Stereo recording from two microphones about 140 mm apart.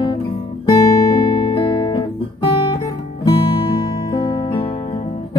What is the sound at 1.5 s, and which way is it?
Guitar, 35° left (ahead or behind).